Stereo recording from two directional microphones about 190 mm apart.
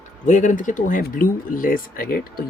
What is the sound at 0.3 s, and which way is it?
Speech, 40° left (ahead or behind).